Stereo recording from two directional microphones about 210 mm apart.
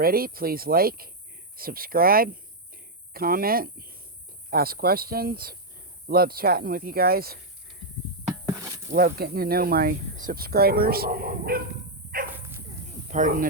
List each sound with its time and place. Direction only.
0.0 s speech: 45° right (ahead or behind)
8.4 s a sound: 15° right (ahead or behind)
8.9 s speech: 45° right (ahead or behind)
13.1 s speech: 35° right (ahead or behind)